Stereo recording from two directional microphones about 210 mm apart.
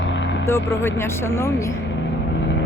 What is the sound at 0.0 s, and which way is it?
Vehicle, 60° left (ahead or behind).